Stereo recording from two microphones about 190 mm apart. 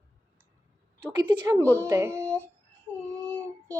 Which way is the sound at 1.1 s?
25° right (ahead or behind).